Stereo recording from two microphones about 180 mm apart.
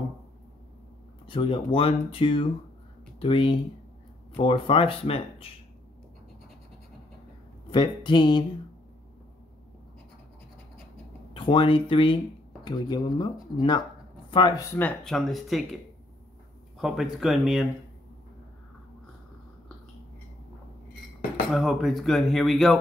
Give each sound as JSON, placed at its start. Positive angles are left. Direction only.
{"t": 1.2, "sound": "speech", "side_deg": 30}
{"t": 7.7, "sound": "speech", "side_deg": 25}
{"t": 11.3, "sound": "speech", "side_deg": 30}
{"t": 16.7, "sound": "speech", "side_deg": 0}
{"t": 21.5, "sound": "speech", "side_deg": 0}